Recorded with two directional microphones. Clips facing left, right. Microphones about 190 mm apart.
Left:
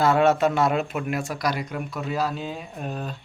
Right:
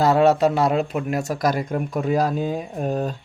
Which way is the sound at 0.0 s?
35° right (ahead or behind).